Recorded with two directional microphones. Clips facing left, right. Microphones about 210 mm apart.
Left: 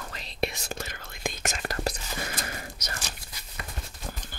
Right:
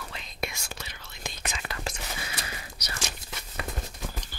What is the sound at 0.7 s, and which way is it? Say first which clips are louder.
Whispering: left 5 dB; 50° left (ahead or behind).